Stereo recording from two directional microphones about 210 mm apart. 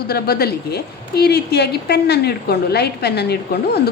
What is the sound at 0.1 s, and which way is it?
A woman's voice, 50° left (ahead or behind).